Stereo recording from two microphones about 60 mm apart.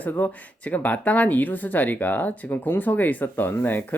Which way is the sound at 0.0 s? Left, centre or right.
Left.